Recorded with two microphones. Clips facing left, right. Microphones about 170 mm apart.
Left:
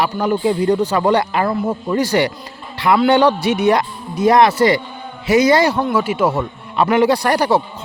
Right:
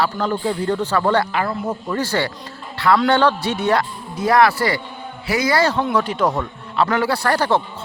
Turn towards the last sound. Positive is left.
turn(degrees=15)  # may be behind; listen again after turning